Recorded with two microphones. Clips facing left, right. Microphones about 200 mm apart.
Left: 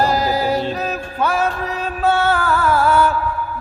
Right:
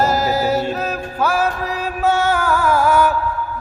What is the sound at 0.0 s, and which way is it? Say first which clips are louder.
Music: even; 5° right (ahead or behind).